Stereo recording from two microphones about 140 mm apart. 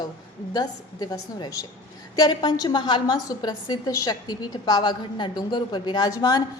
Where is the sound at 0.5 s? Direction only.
30° left (ahead or behind).